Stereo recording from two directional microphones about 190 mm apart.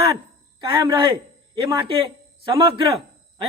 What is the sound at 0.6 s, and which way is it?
A woman's voice, 25° right (ahead or behind).